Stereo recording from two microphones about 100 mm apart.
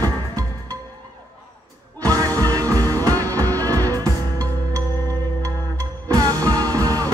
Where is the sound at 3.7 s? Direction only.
35° right (ahead or behind).